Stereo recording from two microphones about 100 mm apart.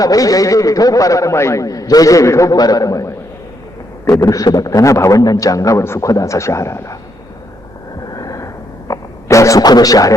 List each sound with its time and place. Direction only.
0.0 s a man's voice: 35° left (ahead or behind)
8.1 s vehicle: 35° left (ahead or behind)
8.9 s speech: 30° left (ahead or behind)